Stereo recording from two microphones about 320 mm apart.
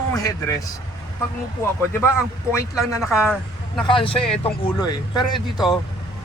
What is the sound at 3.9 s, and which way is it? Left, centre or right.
Speech, centre.